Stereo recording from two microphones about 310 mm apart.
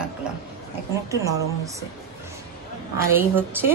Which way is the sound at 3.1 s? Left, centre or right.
Centre.